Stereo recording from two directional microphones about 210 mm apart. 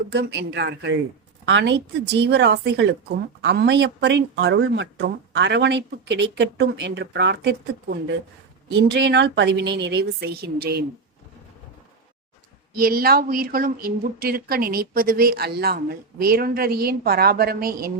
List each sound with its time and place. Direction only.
0.1 s a woman's voice: 50° right (ahead or behind)
12.7 s speech: 45° right (ahead or behind)